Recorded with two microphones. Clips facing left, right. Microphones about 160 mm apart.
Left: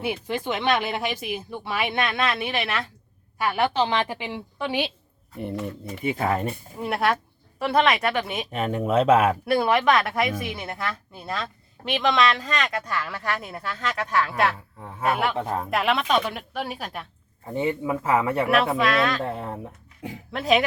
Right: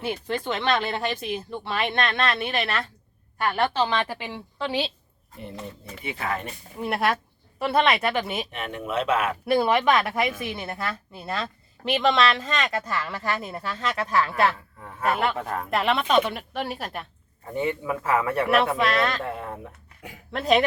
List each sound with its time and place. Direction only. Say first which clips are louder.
0.0 s speech: left 1 dB; 10° left (ahead or behind)
6.0 s speech: left 8 dB; 45° left (ahead or behind)
6.2 s speech: left 4 dB; 30° left (ahead or behind)
6.7 s speech: even; centre (ahead or behind)
8.4 s speech: left 7 dB; 40° left (ahead or behind)
9.5 s speech: right 3 dB; centre (ahead or behind)
15.4 s speech: left 3 dB; 25° left (ahead or behind)
15.6 s speech: right 2 dB; 5° left (ahead or behind)
17.5 s speech: left 2 dB; 20° left (ahead or behind)
18.4 s speech: even; centre (ahead or behind)
19.2 s speech: left 2 dB; 25° left (ahead or behind)
20.3 s speech: right 1 dB; centre (ahead or behind)